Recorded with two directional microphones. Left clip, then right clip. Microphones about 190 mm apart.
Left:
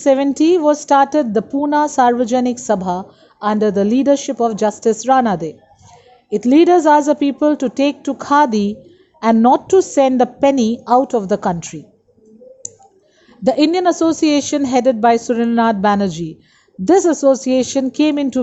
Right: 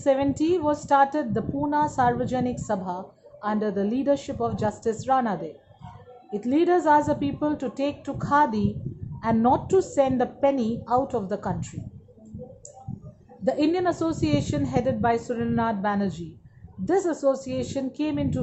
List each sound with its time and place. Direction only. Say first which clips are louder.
0.0 s a woman's voice: left 9 dB; 35° left (ahead or behind)
13.4 s a woman's voice: left 10 dB; 40° left (ahead or behind)